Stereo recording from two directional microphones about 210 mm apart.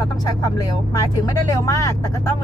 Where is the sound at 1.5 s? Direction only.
15° left (ahead or behind).